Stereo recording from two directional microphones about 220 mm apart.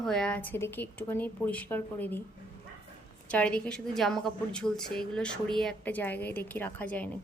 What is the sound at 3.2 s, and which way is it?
A woman's voice, 5° left (ahead or behind).